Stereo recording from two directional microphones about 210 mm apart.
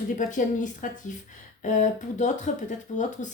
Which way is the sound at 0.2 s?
35° left (ahead or behind).